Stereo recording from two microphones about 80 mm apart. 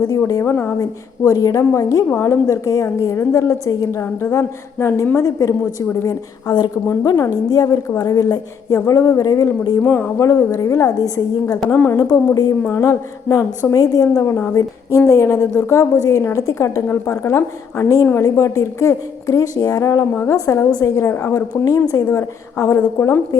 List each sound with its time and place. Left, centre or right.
0.3 s a woman's voice: left
7.0 s a woman's voice: left
9.8 s speech: left
10.2 s a woman's voice: left
11.7 s speech: left
12.1 s a woman's voice: left
12.6 s speech: left
13.7 s a woman's voice: left
14.2 s a woman's voice: left
21.5 s a woman's voice: left
22.1 s a woman's voice: left